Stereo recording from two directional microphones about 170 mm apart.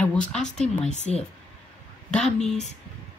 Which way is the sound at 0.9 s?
40° left (ahead or behind).